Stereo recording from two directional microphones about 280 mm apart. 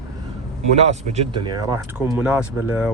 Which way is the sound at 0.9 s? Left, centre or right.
Right.